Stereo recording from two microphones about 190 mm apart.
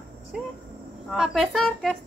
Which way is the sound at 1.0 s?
Centre (ahead or behind).